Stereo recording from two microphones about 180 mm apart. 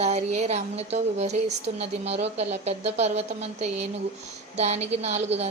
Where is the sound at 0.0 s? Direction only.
40° right (ahead or behind).